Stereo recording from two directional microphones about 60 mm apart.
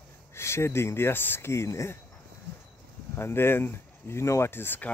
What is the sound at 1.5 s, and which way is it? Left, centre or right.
Speech, left.